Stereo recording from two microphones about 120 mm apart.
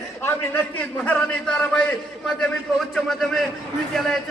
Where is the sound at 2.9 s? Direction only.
Centre (ahead or behind).